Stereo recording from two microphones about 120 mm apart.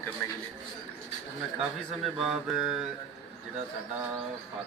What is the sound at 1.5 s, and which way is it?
A man's voice, 5° right (ahead or behind).